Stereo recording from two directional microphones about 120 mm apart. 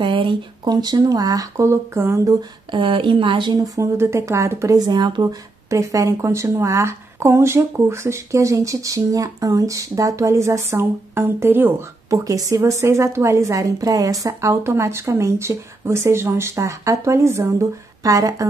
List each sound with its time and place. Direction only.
0.0 s speech: 45° right (ahead or behind); by 2.3 s 20° right (ahead or behind)
2.7 s a woman's voice: 45° right (ahead or behind); by 18.5 s 30° right (ahead or behind)